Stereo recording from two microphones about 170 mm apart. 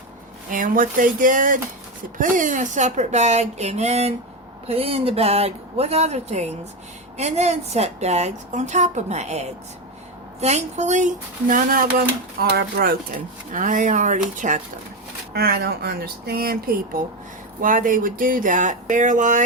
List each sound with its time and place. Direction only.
0.5 s a woman's voice: 50° right (ahead or behind)
15.3 s speech: 65° right (ahead or behind); by 19.4 s 50° right (ahead or behind)